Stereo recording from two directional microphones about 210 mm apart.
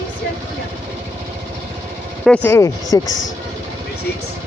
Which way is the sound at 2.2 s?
10° left (ahead or behind).